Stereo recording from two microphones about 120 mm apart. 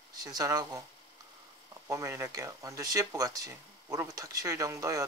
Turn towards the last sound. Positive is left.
turn(degrees=-30)  # may be behind; listen again after turning